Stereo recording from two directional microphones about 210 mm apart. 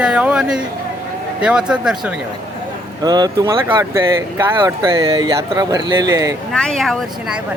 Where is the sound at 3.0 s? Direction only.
20° right (ahead or behind).